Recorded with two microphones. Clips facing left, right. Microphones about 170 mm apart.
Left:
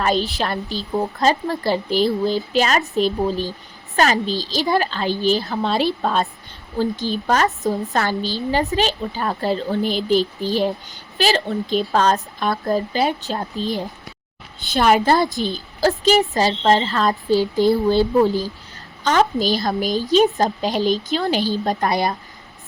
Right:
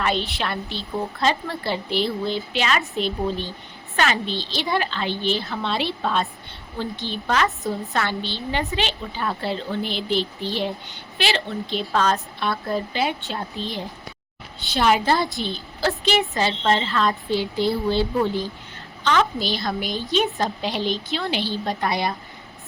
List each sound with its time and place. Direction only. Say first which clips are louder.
0.0 s a woman's voice: left 4 dB; 40° left (ahead or behind)